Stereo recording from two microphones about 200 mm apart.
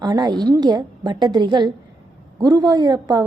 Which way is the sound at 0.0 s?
20° right (ahead or behind).